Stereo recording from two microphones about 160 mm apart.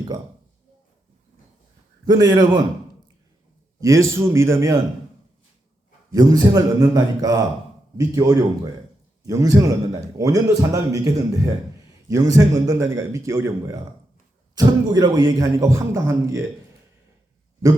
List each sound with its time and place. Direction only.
2.0 s a man's voice: 25° right (ahead or behind)
3.8 s a man's voice: 20° right (ahead or behind)
6.1 s a man's voice: 25° right (ahead or behind)